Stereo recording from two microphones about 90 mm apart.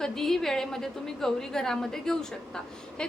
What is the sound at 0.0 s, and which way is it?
A woman's voice, 5° left (ahead or behind).